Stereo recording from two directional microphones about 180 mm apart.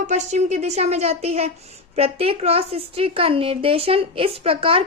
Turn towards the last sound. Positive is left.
turn(degrees=-30)  # may be behind; listen again after turning